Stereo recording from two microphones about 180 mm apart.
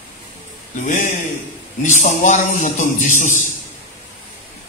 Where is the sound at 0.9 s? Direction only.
45° left (ahead or behind).